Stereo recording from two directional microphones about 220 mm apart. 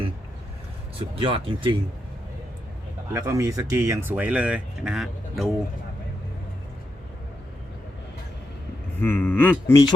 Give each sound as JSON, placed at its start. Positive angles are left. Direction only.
{"t": 0.9, "sound": "speech", "side_deg": -25}
{"t": 3.1, "sound": "speech", "side_deg": -15}
{"t": 9.0, "sound": "speech", "side_deg": 10}